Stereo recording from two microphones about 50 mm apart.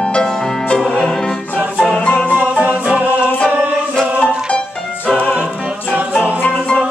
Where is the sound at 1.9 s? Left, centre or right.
Left.